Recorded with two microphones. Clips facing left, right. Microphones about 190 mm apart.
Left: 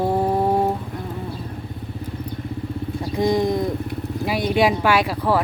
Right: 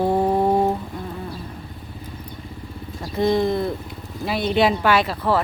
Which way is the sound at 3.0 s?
15° left (ahead or behind).